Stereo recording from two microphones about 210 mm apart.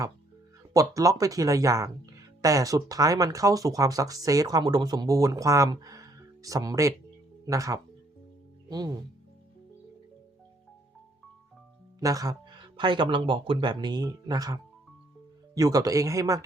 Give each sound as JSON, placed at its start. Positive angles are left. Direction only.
{"t": 0.7, "sound": "speech", "side_deg": -15}
{"t": 11.9, "sound": "speech", "side_deg": -15}